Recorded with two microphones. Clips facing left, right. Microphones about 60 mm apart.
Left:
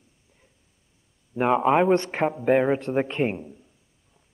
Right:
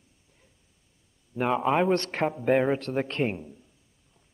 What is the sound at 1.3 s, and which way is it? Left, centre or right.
A man's voice, centre.